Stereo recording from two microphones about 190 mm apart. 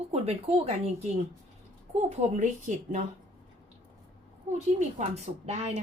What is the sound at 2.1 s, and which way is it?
Speech, 40° right (ahead or behind).